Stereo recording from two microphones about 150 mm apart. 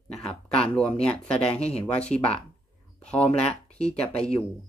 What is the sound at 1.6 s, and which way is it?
Speech, 45° left (ahead or behind).